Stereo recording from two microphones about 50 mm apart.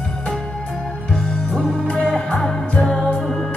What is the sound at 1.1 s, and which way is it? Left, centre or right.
Music, centre.